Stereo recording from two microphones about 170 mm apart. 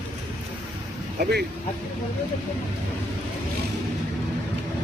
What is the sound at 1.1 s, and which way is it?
Speech, 65° right (ahead or behind).